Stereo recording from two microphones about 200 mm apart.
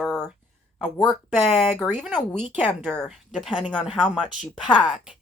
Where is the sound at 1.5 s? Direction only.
Centre (ahead or behind).